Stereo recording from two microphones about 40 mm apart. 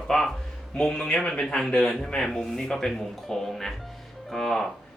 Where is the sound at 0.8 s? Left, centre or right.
Centre.